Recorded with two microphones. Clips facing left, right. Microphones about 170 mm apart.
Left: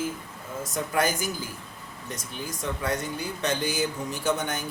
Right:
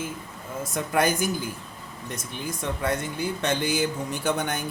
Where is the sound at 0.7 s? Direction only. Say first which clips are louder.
Right 2 dB; 55° right (ahead or behind).